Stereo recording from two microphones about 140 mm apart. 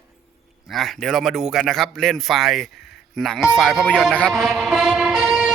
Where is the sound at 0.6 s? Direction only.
Centre (ahead or behind).